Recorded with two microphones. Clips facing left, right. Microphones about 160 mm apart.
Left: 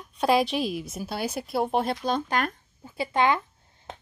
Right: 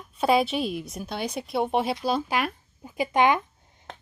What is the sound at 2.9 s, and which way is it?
Speech, 15° right (ahead or behind).